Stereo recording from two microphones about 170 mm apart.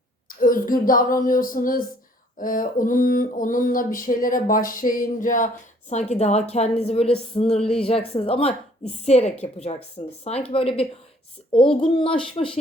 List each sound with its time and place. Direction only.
0.3 s speech: 55° left (ahead or behind)
2.4 s a sound: 55° left (ahead or behind)
5.9 s a woman's voice: 40° left (ahead or behind)